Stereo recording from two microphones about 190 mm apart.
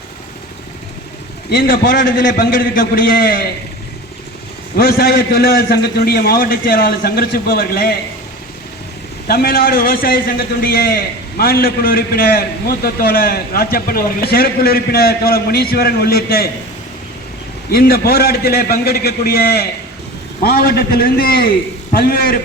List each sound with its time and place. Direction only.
1.5 s a man's voice: 50° left (ahead or behind)
4.8 s a man's voice: 55° left (ahead or behind)
9.2 s a man's voice: 55° left (ahead or behind)
17.7 s a man's voice: 55° left (ahead or behind)